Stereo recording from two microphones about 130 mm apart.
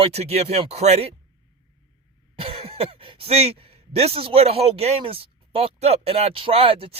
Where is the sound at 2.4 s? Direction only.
50° right (ahead or behind).